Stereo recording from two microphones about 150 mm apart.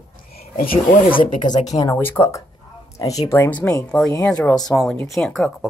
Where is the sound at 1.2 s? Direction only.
55° left (ahead or behind).